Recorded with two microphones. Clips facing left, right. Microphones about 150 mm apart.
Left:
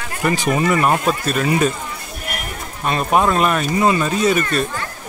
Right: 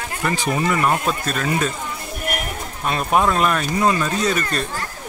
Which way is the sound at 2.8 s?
Centre (ahead or behind).